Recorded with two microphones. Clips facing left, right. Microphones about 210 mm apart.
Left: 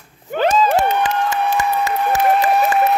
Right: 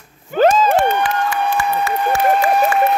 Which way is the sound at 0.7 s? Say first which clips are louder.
Right 1 dB; 20° left (ahead or behind).